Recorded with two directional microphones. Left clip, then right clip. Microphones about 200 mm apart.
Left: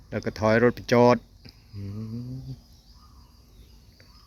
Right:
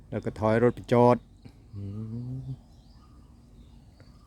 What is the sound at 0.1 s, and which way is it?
Speech, 15° right (ahead or behind).